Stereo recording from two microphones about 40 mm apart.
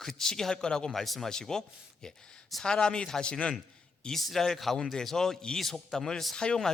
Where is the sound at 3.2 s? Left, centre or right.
Left.